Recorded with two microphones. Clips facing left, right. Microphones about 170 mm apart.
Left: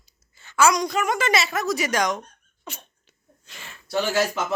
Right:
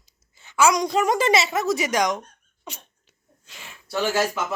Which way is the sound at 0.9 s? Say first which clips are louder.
Right 3 dB; 35° right (ahead or behind).